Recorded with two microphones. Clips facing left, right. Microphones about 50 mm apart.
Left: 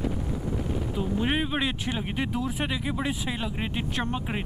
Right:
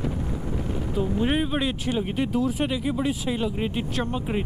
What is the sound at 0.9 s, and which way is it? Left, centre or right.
Speech, centre.